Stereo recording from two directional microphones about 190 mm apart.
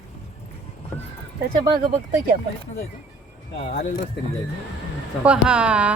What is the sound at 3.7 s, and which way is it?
Speech, 45° left (ahead or behind).